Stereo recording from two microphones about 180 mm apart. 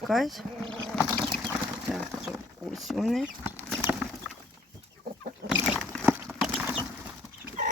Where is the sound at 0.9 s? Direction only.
Centre (ahead or behind).